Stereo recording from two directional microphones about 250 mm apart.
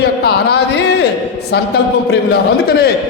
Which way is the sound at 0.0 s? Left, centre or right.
Left.